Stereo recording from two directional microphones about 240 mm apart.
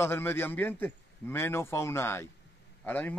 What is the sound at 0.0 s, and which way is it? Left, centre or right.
A man's voice, centre.